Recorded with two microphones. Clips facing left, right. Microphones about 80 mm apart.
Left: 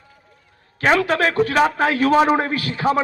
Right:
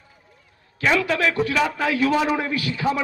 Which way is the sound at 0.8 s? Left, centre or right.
Left.